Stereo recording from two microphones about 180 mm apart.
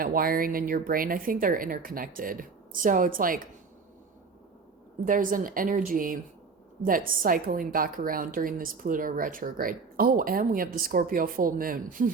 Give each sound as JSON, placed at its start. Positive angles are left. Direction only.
{"t": 0.0, "sound": "a woman's voice", "side_deg": -50}
{"t": 5.0, "sound": "a woman's voice", "side_deg": -50}